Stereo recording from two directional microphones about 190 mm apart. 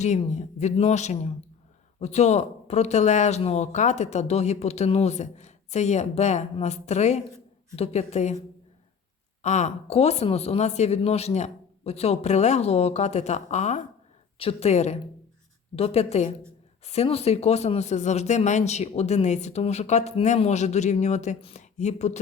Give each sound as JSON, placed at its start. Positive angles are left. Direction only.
{"t": 0.0, "sound": "speech", "side_deg": 35}
{"t": 9.4, "sound": "speech", "side_deg": 35}